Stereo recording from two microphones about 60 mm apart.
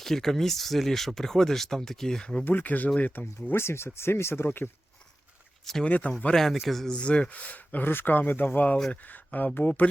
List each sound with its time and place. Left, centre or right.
0.0 s speech: centre
2.4 s speech: left
4.4 s speech: left
5.8 s speech: left
6.3 s speech: centre; by 9.8 s left